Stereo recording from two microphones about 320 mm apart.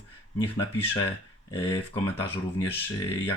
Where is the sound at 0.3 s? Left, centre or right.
Centre.